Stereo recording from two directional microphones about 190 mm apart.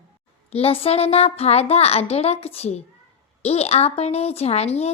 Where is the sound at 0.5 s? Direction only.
30° left (ahead or behind).